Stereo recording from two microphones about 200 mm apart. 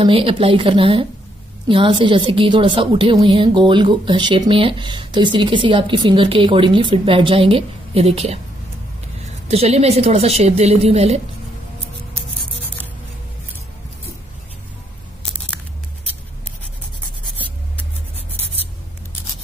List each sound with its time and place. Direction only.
0.0 s speech: 25° right (ahead or behind)
9.5 s a woman's voice: 30° right (ahead or behind)